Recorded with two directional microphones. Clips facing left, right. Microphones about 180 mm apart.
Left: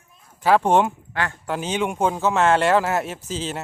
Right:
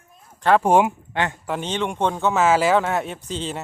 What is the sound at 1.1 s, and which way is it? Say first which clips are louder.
Speech: right 3 dB; 20° right (ahead or behind).